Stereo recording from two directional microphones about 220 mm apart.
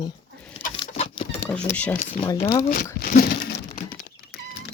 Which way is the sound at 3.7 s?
35° left (ahead or behind).